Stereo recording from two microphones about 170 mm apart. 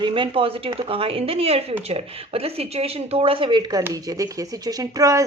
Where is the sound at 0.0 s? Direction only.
30° right (ahead or behind).